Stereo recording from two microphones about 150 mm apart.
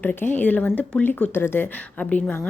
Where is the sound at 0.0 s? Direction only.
10° left (ahead or behind).